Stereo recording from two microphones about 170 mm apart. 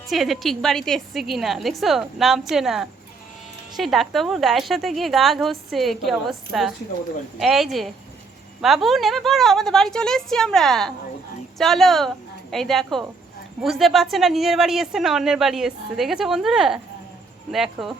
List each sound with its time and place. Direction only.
0.1 s a woman's voice: centre (ahead or behind)